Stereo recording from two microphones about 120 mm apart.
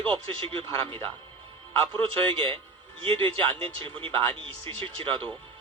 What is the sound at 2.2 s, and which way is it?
Speech, 45° right (ahead or behind).